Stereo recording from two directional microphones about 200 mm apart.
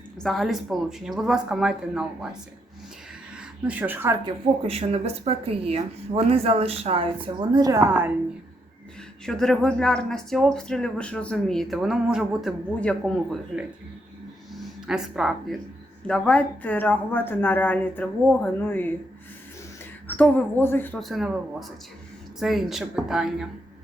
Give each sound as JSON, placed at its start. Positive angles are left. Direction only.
{"t": 0.2, "sound": "speech", "side_deg": 0}
{"t": 3.3, "sound": "speech", "side_deg": -5}
{"t": 4.6, "sound": "speech", "side_deg": -30}
{"t": 9.2, "sound": "speech", "side_deg": 0}
{"t": 20.1, "sound": "speech", "side_deg": 10}